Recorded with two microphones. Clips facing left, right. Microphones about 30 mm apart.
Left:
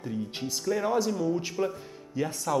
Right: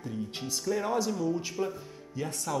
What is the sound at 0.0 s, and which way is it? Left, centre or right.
Speech, centre.